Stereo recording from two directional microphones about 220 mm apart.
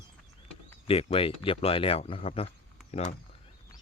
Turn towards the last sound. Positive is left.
turn(degrees=30)  # may be behind; listen again after turning